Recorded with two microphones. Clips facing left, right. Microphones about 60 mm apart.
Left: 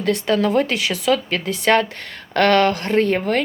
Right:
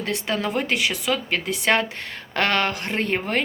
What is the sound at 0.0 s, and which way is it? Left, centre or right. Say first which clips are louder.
Speech: left 7 dB; right.